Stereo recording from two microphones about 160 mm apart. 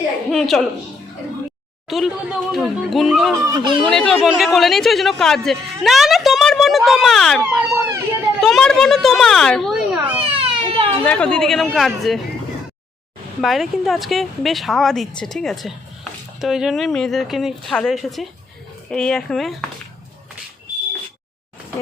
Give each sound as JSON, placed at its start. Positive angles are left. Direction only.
{"t": 0.3, "sound": "a woman's voice", "side_deg": 0}
{"t": 1.9, "sound": "a woman's voice", "side_deg": 0}
{"t": 3.4, "sound": "speech", "side_deg": -20}
{"t": 3.8, "sound": "speech", "side_deg": 5}
{"t": 7.4, "sound": "emergency vehicle", "side_deg": -15}
{"t": 8.4, "sound": "a woman's voice", "side_deg": 0}
{"t": 10.2, "sound": "baby cry", "side_deg": -35}
{"t": 11.0, "sound": "a woman's voice", "side_deg": 5}
{"t": 13.4, "sound": "a woman's voice", "side_deg": 0}